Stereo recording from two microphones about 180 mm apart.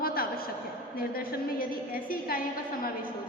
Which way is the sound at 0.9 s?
55° left (ahead or behind).